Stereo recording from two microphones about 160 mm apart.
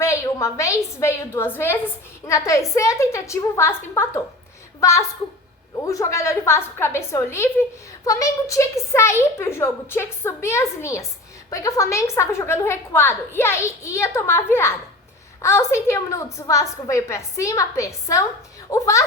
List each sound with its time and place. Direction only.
0.0 s a woman's voice: 20° left (ahead or behind)